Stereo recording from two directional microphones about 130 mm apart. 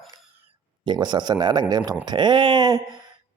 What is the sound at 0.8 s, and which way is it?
Speech, 35° right (ahead or behind).